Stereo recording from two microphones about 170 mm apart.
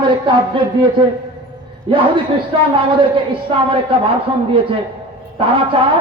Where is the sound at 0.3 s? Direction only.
30° right (ahead or behind).